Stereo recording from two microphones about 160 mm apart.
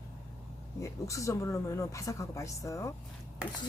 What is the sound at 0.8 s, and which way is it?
Speech, 20° left (ahead or behind).